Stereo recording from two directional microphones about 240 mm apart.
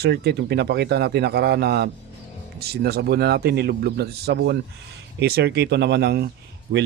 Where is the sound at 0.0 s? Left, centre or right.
Right.